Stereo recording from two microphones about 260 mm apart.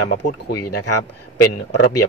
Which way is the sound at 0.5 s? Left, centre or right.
Left.